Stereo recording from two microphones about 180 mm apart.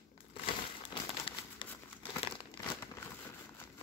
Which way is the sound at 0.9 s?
25° left (ahead or behind).